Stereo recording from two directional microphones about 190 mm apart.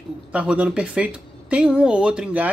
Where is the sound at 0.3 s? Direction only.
5° right (ahead or behind).